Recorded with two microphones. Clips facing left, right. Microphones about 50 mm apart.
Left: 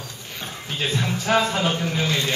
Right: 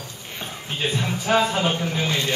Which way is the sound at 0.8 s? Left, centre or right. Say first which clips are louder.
Even; centre.